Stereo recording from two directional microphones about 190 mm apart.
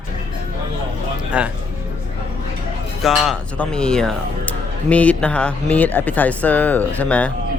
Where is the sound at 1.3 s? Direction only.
5° right (ahead or behind).